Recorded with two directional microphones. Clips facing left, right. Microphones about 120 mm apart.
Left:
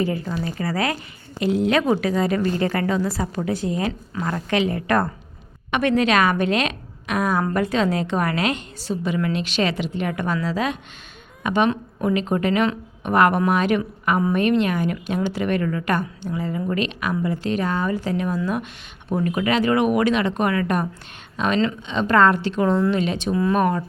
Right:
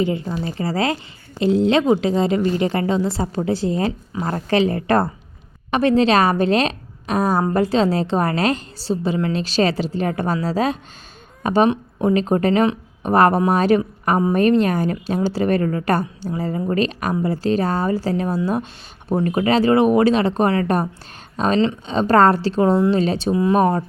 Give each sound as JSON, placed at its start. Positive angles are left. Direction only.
{"t": 0.0, "sound": "a woman's voice", "side_deg": -20}
{"t": 23.3, "sound": "a woman's voice", "side_deg": -20}
{"t": 23.6, "sound": "a woman's voice", "side_deg": -35}